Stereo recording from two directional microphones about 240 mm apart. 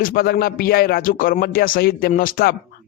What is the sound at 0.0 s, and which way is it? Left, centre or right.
A man's voice, left.